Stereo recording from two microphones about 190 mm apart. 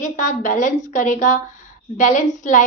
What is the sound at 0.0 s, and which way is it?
A woman's voice, 40° left (ahead or behind).